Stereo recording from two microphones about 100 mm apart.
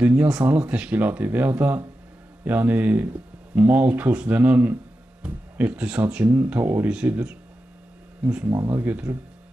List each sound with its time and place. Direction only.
0.0 s speech: 25° right (ahead or behind)
8.5 s speech: 30° right (ahead or behind)